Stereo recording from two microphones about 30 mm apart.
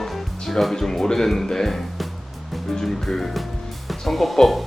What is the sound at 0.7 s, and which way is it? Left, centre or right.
Speech, centre.